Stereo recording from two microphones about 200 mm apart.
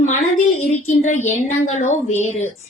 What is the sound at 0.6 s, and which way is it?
Speech, 35° left (ahead or behind).